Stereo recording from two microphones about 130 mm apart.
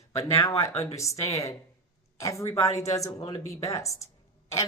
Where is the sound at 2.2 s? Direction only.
25° left (ahead or behind).